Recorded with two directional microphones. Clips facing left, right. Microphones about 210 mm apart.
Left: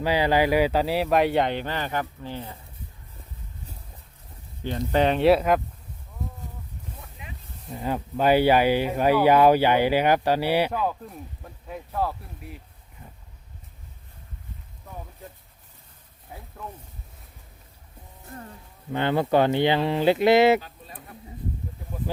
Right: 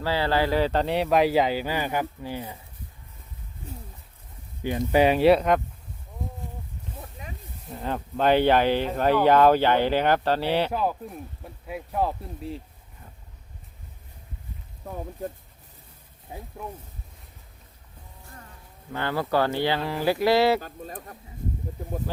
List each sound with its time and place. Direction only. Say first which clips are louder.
0.0 s speech: left 3 dB; 15° left (ahead or behind); by 2.6 s 10° right (ahead or behind)
4.8 s speech: right 2 dB; 10° right (ahead or behind)
7.7 s speech: left 2 dB; 5° left (ahead or behind)
10.7 s speech: right 1 dB; 10° right (ahead or behind); by 12.6 s 30° right (ahead or behind)
16.3 s speech: right 4 dB; 25° right (ahead or behind)
18.9 s speech: left 4 dB; 20° left (ahead or behind)
20.6 s bird: right 6 dB; 45° right (ahead or behind)